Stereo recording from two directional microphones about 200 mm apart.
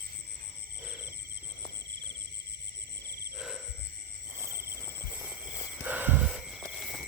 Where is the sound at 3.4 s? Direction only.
5° right (ahead or behind).